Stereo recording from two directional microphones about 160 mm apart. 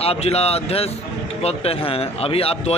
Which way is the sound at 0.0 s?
40° left (ahead or behind).